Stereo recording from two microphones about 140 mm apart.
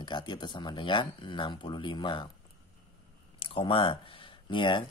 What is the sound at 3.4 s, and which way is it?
Speech, 40° left (ahead or behind).